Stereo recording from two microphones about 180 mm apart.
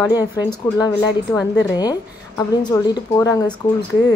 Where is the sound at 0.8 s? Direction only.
20° left (ahead or behind).